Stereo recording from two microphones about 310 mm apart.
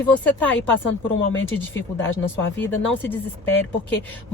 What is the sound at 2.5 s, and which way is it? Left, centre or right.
Speech, centre.